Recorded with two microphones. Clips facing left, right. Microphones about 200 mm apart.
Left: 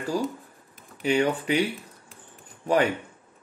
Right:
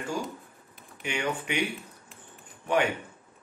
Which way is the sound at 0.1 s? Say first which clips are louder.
Left 6 dB; 35° left (ahead or behind).